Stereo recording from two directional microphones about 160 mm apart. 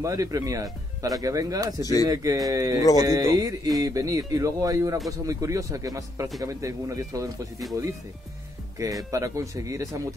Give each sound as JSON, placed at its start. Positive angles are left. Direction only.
{"t": 0.0, "sound": "speech", "side_deg": -20}
{"t": 1.8, "sound": "speech", "side_deg": 25}
{"t": 2.0, "sound": "speech", "side_deg": -25}
{"t": 8.8, "sound": "speech", "side_deg": -20}